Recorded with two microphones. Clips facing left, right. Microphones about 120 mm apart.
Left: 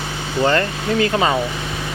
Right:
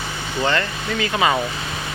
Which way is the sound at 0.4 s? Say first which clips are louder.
Left 4 dB; 40° left (ahead or behind).